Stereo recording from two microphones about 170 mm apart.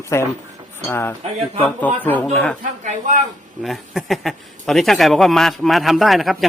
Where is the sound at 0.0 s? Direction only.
15° left (ahead or behind).